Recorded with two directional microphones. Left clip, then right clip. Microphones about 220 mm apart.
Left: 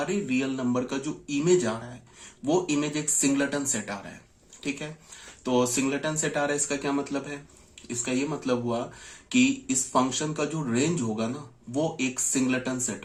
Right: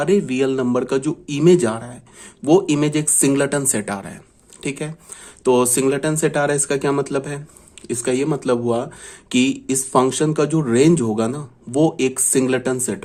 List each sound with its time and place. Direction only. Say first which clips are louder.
0.0 s speech: right 11 dB; 50° right (ahead or behind)
5.4 s speech: right 9 dB; 50° right (ahead or behind)